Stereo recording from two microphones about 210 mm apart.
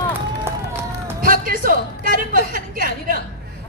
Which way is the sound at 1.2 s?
40° right (ahead or behind).